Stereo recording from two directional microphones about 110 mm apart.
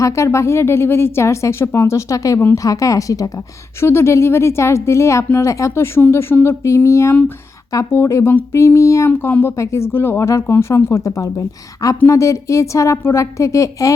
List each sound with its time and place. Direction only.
0.0 s speech: 25° left (ahead or behind)